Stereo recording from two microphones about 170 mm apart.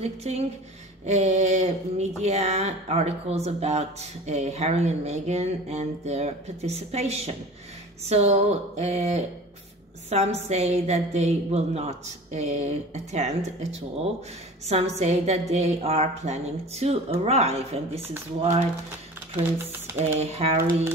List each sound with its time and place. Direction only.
0.0 s speech: 40° right (ahead or behind)
14.7 s speech: 40° right (ahead or behind)
19.3 s speech: 15° right (ahead or behind)
20.0 s speech: 40° right (ahead or behind)